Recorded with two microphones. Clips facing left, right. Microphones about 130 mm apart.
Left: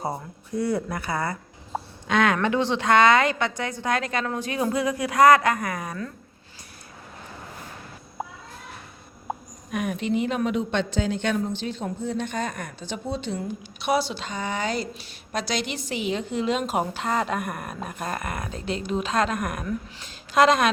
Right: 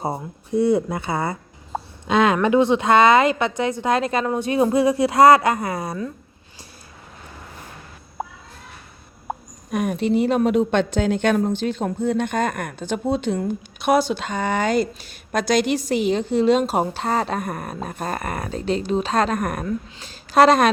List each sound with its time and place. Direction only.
0.0 s a woman's voice: 25° right (ahead or behind)
9.7 s a woman's voice: 40° right (ahead or behind)